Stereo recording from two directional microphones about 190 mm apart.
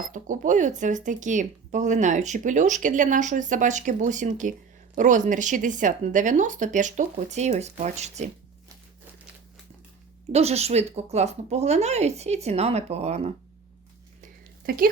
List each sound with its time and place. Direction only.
0.1 s speech: 45° right (ahead or behind)
10.3 s speech: 35° right (ahead or behind)
14.6 s speech: 50° right (ahead or behind)